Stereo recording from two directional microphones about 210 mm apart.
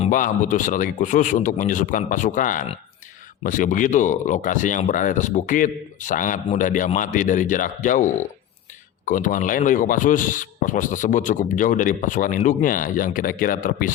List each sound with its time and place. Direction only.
0.0 s speech: 40° left (ahead or behind)